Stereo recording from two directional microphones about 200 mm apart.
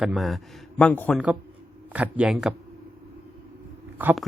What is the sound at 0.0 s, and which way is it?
Speech, centre (ahead or behind).